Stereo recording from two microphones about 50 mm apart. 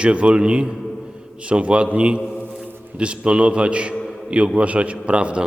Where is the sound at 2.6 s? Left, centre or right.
Right.